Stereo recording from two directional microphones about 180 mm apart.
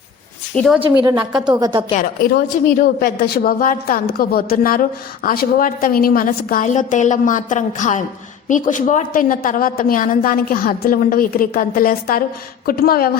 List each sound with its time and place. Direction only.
0.9 s a woman's voice: 20° right (ahead or behind)
1.9 s a woman's voice: 50° left (ahead or behind)